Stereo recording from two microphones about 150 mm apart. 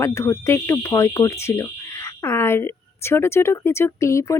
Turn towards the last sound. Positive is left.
turn(degrees=20)  # may be behind; listen again after turning